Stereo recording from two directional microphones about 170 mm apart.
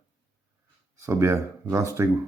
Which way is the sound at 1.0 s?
15° right (ahead or behind).